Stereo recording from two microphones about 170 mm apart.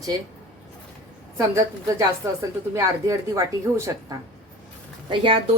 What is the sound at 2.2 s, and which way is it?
A woman's voice, 15° right (ahead or behind).